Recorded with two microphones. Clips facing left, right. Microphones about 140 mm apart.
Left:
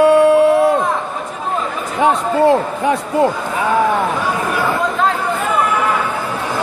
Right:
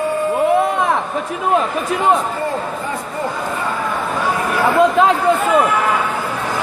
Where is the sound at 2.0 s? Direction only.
80° left.